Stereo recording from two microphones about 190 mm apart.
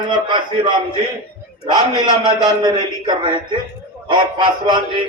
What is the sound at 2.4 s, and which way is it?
Speech, 25° right (ahead or behind).